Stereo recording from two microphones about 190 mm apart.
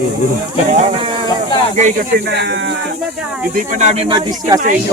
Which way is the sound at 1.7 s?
40° right (ahead or behind).